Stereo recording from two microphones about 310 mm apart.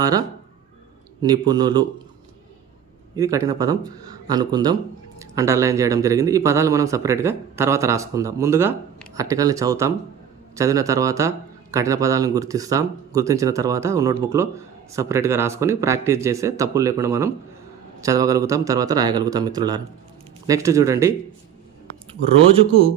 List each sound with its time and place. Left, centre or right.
0.0 s speech: centre
3.2 s speech: centre
22.4 s speech: centre